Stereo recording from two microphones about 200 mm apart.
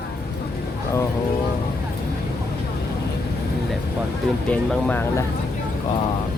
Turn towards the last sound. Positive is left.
turn(degrees=5)  # may be behind; listen again after turning